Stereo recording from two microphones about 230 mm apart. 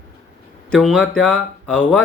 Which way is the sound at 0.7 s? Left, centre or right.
Centre.